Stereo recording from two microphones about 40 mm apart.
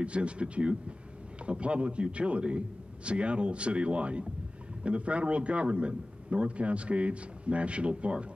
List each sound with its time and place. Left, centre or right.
0.0 s a man's voice: right